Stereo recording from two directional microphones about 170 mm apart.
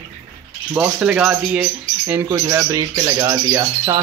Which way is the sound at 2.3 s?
20° right (ahead or behind).